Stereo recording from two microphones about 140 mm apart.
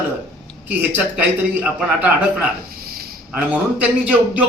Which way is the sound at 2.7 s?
90° right.